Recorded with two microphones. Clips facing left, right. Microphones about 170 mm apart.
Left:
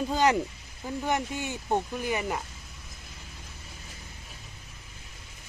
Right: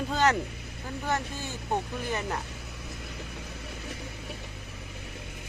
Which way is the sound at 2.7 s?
70° right (ahead or behind).